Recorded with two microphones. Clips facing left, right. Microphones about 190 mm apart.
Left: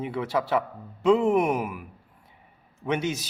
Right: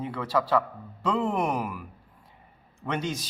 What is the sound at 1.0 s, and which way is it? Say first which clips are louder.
Speech: left 6 dB; 20° left (ahead or behind).